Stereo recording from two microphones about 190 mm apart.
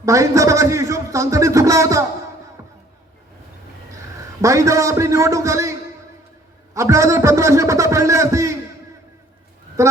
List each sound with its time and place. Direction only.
0.0 s a sound: 15° right (ahead or behind)
3.9 s a man's voice: 15° right (ahead or behind)
6.7 s a man's voice: 15° right (ahead or behind)